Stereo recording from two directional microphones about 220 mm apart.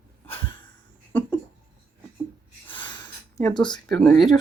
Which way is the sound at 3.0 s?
15° left (ahead or behind).